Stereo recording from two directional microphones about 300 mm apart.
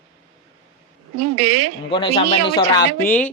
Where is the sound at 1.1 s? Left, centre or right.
Right.